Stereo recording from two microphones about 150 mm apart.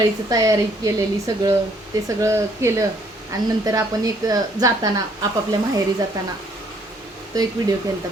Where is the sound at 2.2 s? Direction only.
20° right (ahead or behind).